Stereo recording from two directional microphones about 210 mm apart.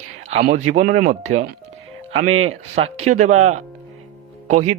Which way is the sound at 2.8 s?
30° right (ahead or behind).